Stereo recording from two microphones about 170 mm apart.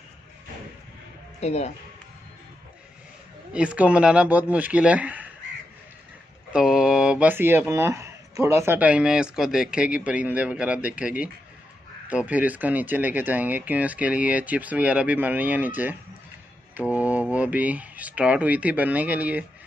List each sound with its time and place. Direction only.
1.4 s speech: 40° left (ahead or behind)
3.5 s speech: 5° right (ahead or behind)
6.5 s speech: 5° right (ahead or behind)